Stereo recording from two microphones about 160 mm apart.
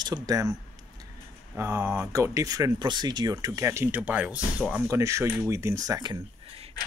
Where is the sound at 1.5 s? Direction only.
15° right (ahead or behind).